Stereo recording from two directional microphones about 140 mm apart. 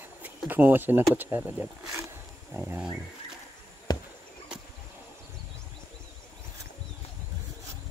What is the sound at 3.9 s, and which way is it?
Chop, 30° left (ahead or behind).